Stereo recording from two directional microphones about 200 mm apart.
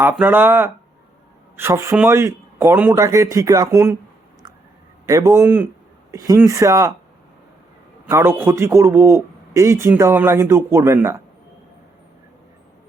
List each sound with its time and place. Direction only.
0.0 s a man's voice: 10° right (ahead or behind)
5.0 s a man's voice: 15° right (ahead or behind)
8.0 s a man's voice: 10° right (ahead or behind)